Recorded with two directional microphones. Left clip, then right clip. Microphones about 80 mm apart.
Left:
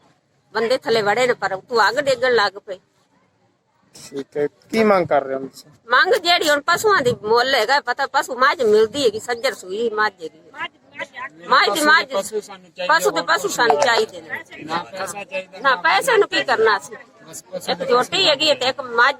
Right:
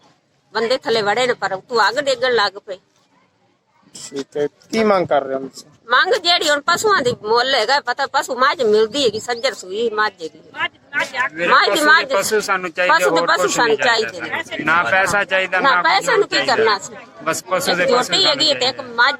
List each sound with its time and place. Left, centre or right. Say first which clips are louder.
0.5 s speech: right 1 dB; centre
4.4 s speech: even; centre; by 12.2 s right
12.3 s speech: right 11 dB; right
12.9 s speech: right 2 dB; centre
15.6 s speech: left 1 dB; right